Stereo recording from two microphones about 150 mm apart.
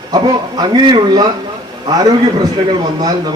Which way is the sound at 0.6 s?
30° right (ahead or behind).